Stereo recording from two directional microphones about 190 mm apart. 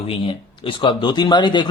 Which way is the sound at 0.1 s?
25° left (ahead or behind).